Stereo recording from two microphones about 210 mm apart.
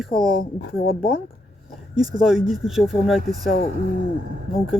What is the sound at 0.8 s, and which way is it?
Speech, 45° left (ahead or behind).